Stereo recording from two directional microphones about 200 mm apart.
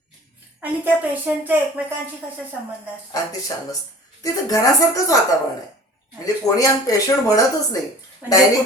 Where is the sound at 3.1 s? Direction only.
20° left (ahead or behind).